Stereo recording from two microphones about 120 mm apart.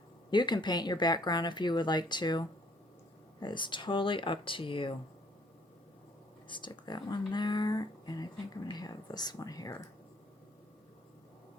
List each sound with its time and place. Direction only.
0.3 s speech: 40° left (ahead or behind)
6.5 s speech: 40° left (ahead or behind)